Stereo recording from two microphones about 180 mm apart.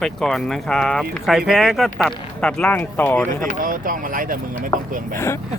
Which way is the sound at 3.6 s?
50° right (ahead or behind).